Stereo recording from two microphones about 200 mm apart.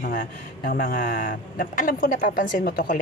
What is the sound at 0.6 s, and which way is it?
A woman's voice, 45° left (ahead or behind).